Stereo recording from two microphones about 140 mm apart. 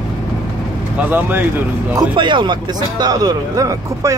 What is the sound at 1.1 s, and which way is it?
Speech, 15° right (ahead or behind).